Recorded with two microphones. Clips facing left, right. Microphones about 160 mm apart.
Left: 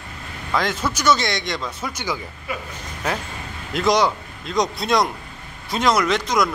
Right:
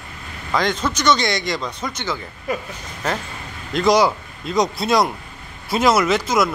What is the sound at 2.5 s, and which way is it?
Speech, 40° right (ahead or behind).